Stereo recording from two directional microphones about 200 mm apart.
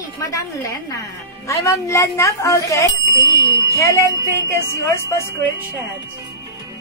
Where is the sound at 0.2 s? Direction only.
15° left (ahead or behind).